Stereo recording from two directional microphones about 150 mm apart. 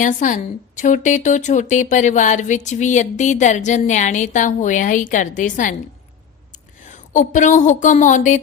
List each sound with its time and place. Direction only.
0.0 s a woman's voice: 60° left (ahead or behind)